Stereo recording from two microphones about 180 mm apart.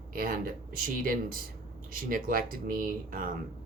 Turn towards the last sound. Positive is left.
turn(degrees=-50)  # may be behind; listen again after turning